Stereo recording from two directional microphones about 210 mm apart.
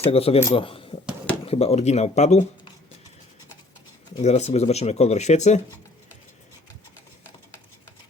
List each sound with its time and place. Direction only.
0.0 s a man's voice: 30° left (ahead or behind)
4.2 s speech: 30° left (ahead or behind)